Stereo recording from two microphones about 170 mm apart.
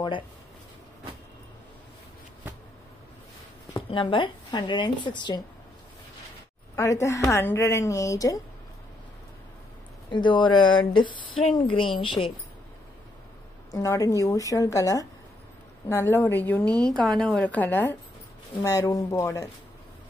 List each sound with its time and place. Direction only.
3.7 s a woman's voice: 30° left (ahead or behind)
6.7 s a woman's voice: 15° left (ahead or behind)
10.1 s a woman's voice: 25° left (ahead or behind)
13.7 s a woman's voice: 20° left (ahead or behind)